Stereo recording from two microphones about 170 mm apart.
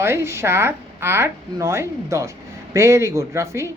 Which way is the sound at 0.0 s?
15° right (ahead or behind).